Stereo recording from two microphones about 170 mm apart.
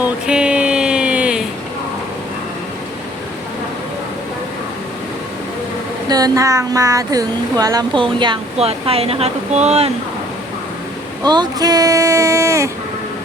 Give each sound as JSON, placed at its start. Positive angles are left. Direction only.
{"t": 0.0, "sound": "a sound", "side_deg": -5}
{"t": 6.1, "sound": "speech", "side_deg": -20}
{"t": 11.2, "sound": "speech", "side_deg": -25}